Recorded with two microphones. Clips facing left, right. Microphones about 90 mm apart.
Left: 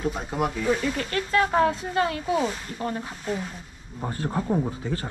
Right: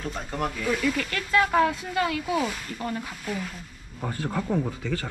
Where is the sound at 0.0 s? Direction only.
10° left (ahead or behind).